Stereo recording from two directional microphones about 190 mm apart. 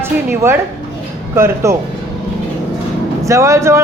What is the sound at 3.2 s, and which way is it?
Speech, 15° right (ahead or behind).